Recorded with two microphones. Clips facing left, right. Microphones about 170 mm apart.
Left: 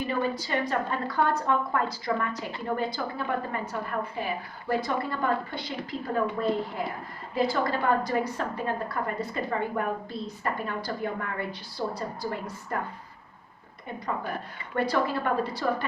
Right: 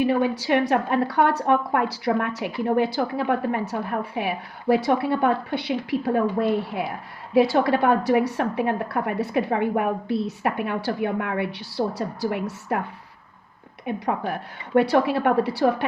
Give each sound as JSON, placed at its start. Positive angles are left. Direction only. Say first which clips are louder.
{"t": 0.0, "sound": "a woman's voice", "louder": "right 7 dB", "side_deg": -75}
{"t": 13.8, "sound": "a woman's voice", "louder": "right 7 dB", "side_deg": -75}